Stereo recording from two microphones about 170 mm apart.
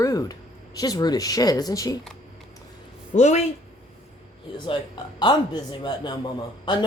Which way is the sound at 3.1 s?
40° left (ahead or behind).